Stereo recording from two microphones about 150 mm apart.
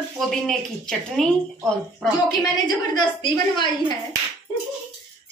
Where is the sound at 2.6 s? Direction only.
30° left (ahead or behind).